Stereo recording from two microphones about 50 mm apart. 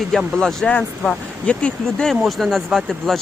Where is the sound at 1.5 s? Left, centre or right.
Left.